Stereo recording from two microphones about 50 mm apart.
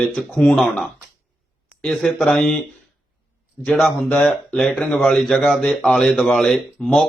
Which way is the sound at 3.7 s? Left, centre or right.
Left.